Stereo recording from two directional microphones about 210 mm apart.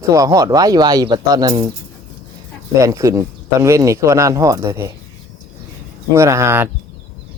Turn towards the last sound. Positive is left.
turn(degrees=-10)  # may be behind; listen again after turning